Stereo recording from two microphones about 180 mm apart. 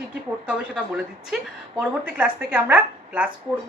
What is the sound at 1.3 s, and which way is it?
A woman's voice, 10° right (ahead or behind).